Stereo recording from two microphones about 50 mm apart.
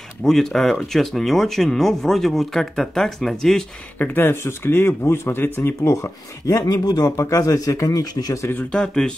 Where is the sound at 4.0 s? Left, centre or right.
Left.